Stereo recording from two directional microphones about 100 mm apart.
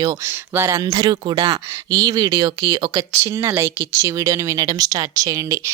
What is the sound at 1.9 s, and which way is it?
Speech, 35° right (ahead or behind).